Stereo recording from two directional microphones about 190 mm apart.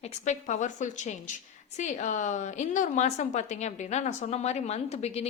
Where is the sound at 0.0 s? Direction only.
40° left (ahead or behind).